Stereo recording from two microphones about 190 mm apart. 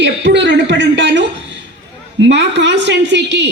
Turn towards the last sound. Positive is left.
turn(degrees=-65)  # may be behind; listen again after turning